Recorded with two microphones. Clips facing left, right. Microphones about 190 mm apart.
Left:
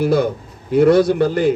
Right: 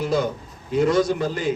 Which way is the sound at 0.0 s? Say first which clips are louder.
Left 6 dB; 60° left (ahead or behind).